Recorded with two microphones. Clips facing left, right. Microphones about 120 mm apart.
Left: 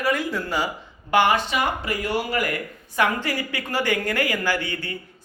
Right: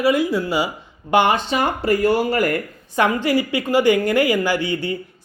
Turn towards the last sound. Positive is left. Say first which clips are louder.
# right 5 dB
turn(degrees=-20)  # may be behind; listen again after turning